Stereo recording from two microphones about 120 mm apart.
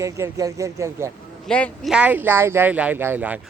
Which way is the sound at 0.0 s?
25° right (ahead or behind).